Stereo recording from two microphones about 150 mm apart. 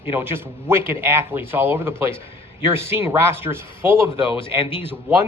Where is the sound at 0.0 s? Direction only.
15° right (ahead or behind).